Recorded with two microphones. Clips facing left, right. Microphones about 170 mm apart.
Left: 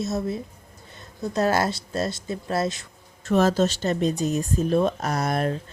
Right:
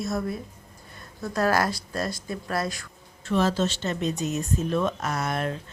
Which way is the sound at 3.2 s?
45° left (ahead or behind).